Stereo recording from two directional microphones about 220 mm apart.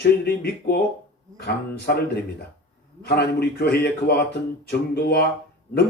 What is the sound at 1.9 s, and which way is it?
Speech, 45° left (ahead or behind).